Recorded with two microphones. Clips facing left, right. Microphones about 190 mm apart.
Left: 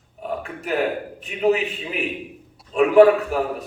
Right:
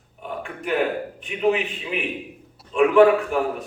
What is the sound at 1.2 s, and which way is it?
A man's voice, 40° left (ahead or behind).